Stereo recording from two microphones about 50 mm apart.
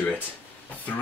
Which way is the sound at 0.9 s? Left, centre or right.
Left.